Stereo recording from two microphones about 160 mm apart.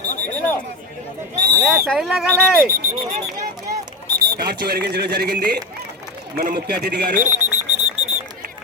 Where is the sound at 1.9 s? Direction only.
5° right (ahead or behind).